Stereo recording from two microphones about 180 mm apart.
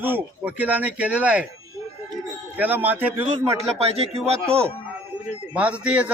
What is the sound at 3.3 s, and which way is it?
A man's voice, 35° right (ahead or behind).